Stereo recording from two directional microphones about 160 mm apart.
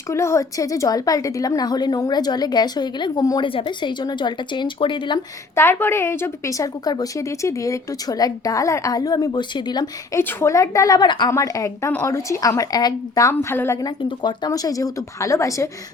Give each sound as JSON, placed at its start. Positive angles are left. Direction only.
{"t": 0.1, "sound": "a woman's voice", "side_deg": 15}
{"t": 5.5, "sound": "a woman's voice", "side_deg": 15}